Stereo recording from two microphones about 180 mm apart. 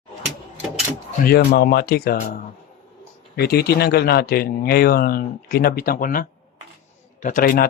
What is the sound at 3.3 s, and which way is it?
Speech, 60° left (ahead or behind).